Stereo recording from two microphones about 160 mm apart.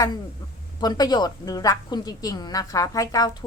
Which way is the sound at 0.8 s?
25° left (ahead or behind).